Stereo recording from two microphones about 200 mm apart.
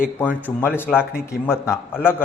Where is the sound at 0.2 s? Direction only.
10° left (ahead or behind).